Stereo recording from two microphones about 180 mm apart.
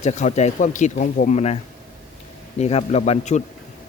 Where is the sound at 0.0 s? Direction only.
40° left (ahead or behind).